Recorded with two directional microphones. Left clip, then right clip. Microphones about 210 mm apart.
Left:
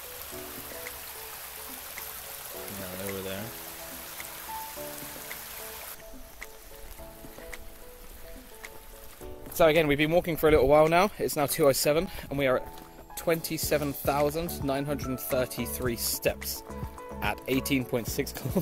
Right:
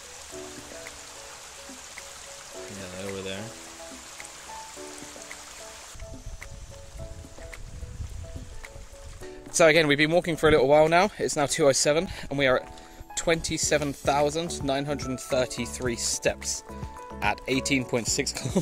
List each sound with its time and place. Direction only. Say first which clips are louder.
9.6 s speech: right 3 dB; 30° right (ahead or behind)